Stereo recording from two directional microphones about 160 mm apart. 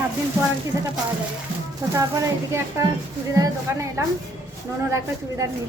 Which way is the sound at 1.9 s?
20° right (ahead or behind).